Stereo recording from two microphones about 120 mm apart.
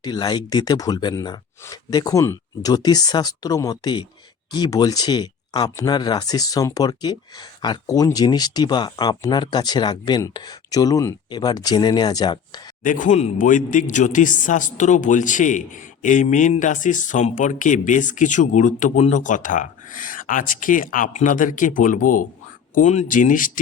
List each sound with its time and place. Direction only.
0.0 s speech: 35° left (ahead or behind)
12.8 s speech: 90° left